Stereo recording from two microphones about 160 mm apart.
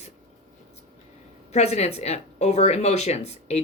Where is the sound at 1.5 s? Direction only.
45° left (ahead or behind).